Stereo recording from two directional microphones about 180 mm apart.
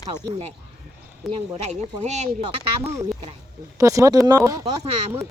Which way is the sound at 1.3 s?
40° right (ahead or behind).